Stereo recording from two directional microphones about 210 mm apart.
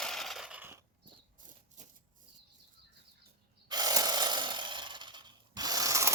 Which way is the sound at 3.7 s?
15° right (ahead or behind).